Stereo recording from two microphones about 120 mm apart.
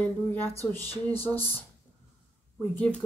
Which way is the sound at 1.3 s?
15° left (ahead or behind).